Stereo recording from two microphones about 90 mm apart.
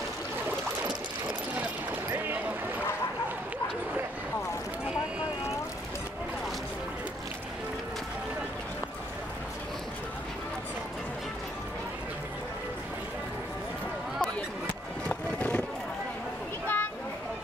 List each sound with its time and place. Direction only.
2.0 s boat: 20° right (ahead or behind)
15.0 s music: 15° left (ahead or behind)
16.6 s a sound: 20° left (ahead or behind)